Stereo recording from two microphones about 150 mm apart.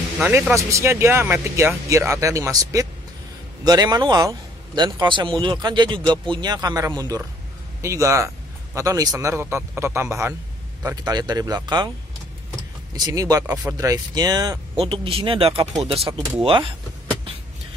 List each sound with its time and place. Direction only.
0.6 s speech: 20° right (ahead or behind)
12.9 s speech: 25° right (ahead or behind)
14.8 s speech: 40° right (ahead or behind)